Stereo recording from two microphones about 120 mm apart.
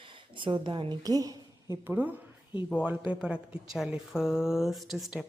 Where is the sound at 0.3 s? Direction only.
45° right (ahead or behind).